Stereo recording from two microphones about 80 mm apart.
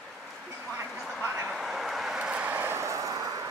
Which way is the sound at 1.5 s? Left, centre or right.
Centre.